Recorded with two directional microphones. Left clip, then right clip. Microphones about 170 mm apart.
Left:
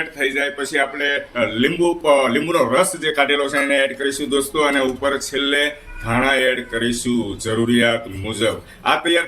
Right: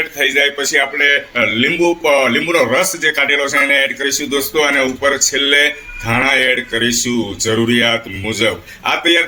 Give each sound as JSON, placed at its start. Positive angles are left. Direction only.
{"t": 0.2, "sound": "a man's voice", "side_deg": -25}